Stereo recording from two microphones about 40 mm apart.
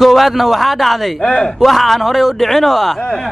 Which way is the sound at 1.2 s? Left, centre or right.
Left.